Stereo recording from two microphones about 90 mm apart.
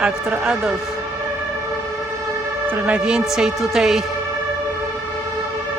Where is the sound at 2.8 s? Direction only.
10° right (ahead or behind).